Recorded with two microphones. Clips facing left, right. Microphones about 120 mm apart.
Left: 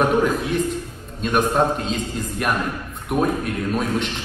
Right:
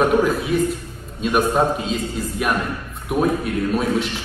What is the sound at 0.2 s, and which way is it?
A man's voice, 5° right (ahead or behind).